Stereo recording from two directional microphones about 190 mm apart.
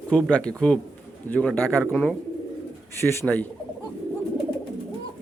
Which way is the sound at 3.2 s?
10° left (ahead or behind).